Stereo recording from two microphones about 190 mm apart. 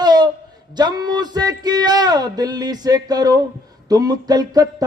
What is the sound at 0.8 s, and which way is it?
Speech, 20° right (ahead or behind).